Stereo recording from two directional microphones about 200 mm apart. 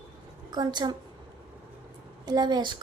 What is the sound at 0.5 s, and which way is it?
Speech, 20° right (ahead or behind).